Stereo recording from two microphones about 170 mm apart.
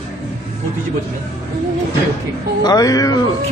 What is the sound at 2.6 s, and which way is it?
Speech, 20° left (ahead or behind).